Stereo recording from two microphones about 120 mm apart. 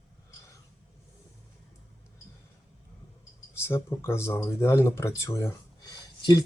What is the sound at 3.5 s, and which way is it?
Speech, 20° left (ahead or behind).